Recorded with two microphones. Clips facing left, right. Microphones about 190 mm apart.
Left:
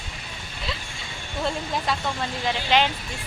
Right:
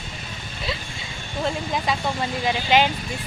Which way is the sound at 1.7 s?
5° right (ahead or behind).